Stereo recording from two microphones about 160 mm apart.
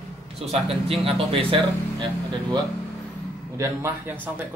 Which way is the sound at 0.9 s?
35° right (ahead or behind).